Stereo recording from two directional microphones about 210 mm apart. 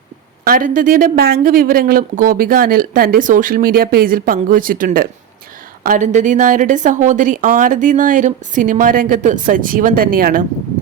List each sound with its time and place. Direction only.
0.4 s a woman's voice: 40° right (ahead or behind)